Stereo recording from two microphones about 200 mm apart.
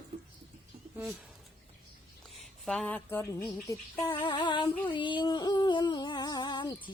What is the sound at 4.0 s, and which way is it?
Music, 20° left (ahead or behind).